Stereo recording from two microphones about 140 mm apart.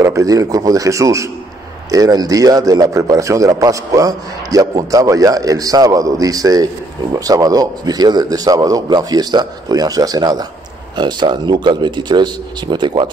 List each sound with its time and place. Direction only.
0.0 s a man's voice: 25° right (ahead or behind)